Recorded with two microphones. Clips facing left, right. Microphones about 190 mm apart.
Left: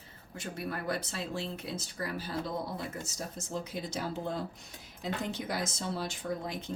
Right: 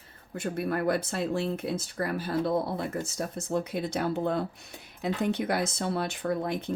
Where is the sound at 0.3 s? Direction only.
55° right (ahead or behind).